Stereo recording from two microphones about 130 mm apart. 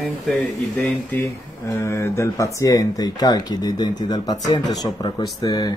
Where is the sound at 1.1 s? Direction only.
20° left (ahead or behind).